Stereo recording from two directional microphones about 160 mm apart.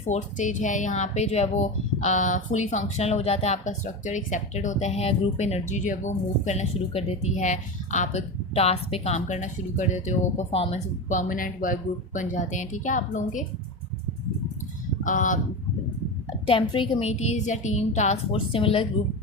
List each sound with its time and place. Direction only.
0.1 s speech: 50° left (ahead or behind)
15.0 s speech: 55° left (ahead or behind)
16.5 s a woman's voice: 30° left (ahead or behind)